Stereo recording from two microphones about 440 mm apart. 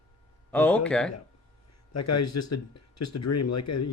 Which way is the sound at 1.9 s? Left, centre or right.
Left.